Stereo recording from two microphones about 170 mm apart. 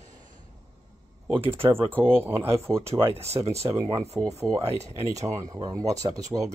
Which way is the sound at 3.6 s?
20° right (ahead or behind).